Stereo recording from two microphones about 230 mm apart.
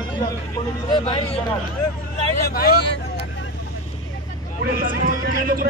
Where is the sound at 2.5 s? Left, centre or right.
Left.